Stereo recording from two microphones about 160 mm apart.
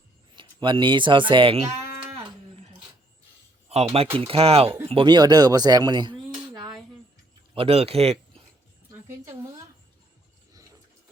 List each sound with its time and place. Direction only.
0.3 s speech: 30° right (ahead or behind)
3.9 s speech: 35° right (ahead or behind)
8.9 s a sound: 20° right (ahead or behind)